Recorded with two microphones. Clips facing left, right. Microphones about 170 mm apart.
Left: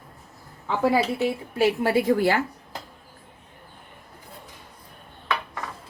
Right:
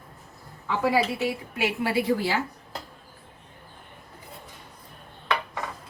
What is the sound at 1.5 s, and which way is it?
Speech, 40° left (ahead or behind).